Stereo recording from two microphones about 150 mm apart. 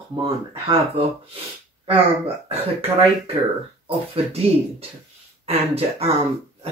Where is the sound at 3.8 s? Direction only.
40° right (ahead or behind).